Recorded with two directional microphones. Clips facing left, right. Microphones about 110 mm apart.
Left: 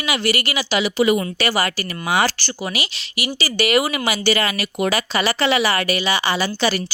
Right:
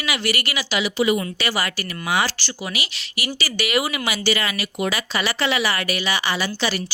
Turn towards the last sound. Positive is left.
turn(degrees=40)  # may be behind; listen again after turning